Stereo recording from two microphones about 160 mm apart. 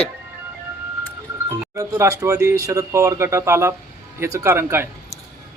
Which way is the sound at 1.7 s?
20° right (ahead or behind).